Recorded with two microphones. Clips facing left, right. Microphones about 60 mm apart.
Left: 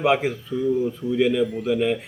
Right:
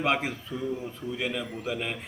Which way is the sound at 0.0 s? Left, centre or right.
Centre.